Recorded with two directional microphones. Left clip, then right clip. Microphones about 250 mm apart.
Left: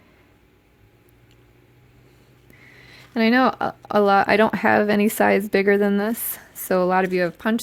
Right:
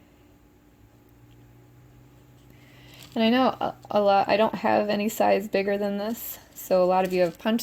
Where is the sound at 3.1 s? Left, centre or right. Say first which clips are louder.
Left 4 dB; left.